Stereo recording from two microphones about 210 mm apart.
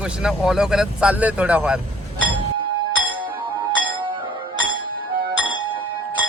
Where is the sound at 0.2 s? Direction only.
Centre (ahead or behind).